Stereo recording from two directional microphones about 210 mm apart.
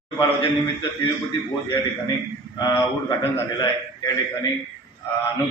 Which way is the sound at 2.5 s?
15° left (ahead or behind).